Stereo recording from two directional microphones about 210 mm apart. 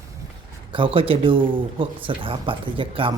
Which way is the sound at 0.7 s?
25° right (ahead or behind).